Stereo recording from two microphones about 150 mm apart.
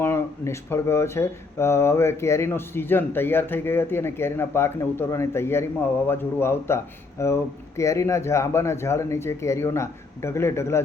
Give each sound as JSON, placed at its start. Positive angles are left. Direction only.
{"t": 0.0, "sound": "speech", "side_deg": 15}